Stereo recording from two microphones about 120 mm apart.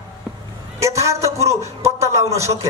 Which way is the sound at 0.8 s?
25° right (ahead or behind).